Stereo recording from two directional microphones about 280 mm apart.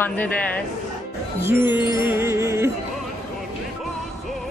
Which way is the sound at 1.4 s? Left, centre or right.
Centre.